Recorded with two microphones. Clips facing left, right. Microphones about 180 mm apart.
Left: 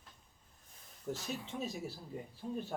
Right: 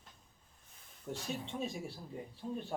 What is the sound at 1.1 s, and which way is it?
Speech, centre (ahead or behind).